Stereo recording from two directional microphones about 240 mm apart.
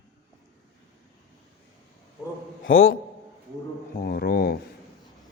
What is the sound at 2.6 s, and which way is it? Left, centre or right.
Speech, left.